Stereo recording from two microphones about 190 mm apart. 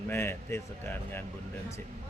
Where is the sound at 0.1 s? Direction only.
10° left (ahead or behind).